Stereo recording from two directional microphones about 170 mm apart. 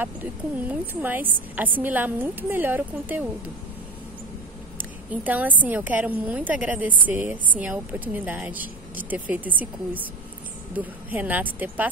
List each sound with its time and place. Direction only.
0.0 s a woman's voice: 10° right (ahead or behind)
4.7 s a woman's voice: 10° right (ahead or behind)